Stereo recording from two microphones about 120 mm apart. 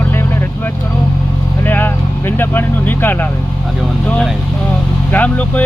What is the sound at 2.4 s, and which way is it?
Speech, 15° left (ahead or behind).